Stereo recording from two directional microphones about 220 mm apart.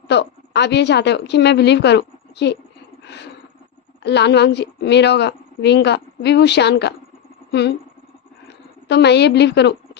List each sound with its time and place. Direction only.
0.1 s a woman's voice: 50° left (ahead or behind)
4.0 s a woman's voice: 50° left (ahead or behind)
8.9 s a woman's voice: 50° left (ahead or behind)